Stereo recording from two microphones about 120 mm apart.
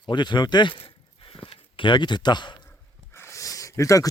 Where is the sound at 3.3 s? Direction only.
25° left (ahead or behind).